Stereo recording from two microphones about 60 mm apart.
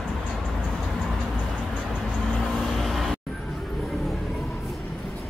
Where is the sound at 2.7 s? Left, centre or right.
Centre.